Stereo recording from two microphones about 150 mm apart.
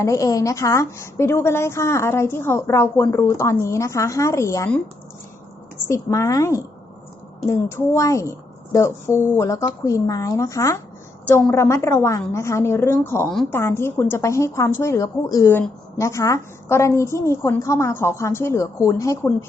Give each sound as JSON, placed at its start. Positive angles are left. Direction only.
{"t": 0.0, "sound": "a woman's voice", "side_deg": 20}
{"t": 5.9, "sound": "a woman's voice", "side_deg": 20}